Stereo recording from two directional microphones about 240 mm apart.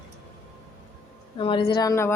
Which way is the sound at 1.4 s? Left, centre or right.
Left.